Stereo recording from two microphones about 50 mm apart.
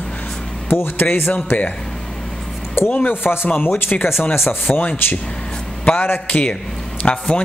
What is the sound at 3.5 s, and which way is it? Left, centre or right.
Speech, left.